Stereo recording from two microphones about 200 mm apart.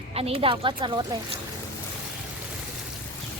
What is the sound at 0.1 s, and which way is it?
A woman's voice, 30° right (ahead or behind).